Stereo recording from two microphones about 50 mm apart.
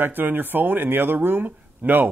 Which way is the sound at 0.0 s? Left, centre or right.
Right.